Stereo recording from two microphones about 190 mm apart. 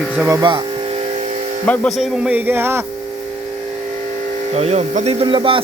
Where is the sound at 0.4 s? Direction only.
25° right (ahead or behind).